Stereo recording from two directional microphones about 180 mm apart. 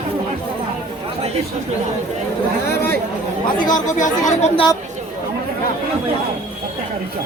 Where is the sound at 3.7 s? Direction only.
45° left (ahead or behind).